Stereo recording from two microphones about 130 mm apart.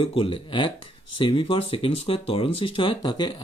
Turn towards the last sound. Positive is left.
turn(degrees=35)  # may be behind; listen again after turning